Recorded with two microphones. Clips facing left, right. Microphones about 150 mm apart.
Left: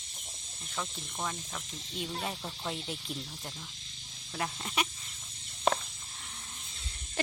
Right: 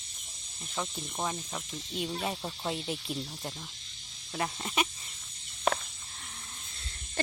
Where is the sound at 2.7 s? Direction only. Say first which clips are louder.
Right 4 dB; 10° right (ahead or behind).